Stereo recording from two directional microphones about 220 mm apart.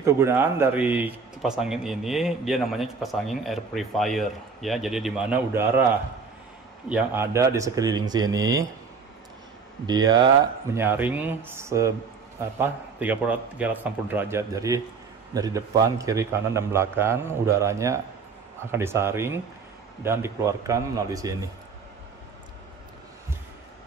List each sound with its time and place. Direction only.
0.0 s speech: 10° right (ahead or behind)
6.9 s a man's voice: 10° right (ahead or behind)
9.8 s a man's voice: 15° right (ahead or behind)